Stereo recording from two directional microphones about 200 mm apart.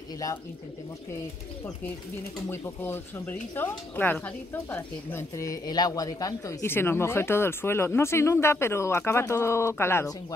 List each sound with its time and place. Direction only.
2.5 s speech: 10° left (ahead or behind)